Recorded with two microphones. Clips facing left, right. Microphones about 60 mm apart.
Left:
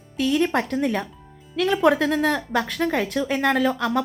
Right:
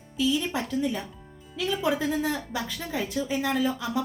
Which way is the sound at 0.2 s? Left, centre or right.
Left.